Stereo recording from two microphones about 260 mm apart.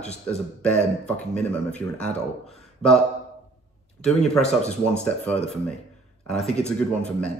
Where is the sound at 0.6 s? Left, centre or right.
Centre.